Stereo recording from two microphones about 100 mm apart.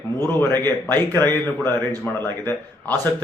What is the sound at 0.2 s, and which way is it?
A man's voice, 20° left (ahead or behind).